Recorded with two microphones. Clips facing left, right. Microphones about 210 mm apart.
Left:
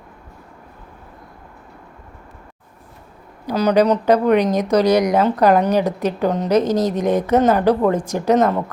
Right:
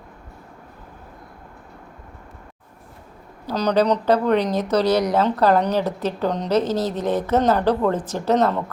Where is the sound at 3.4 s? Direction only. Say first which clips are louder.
Left 4 dB; 10° left (ahead or behind).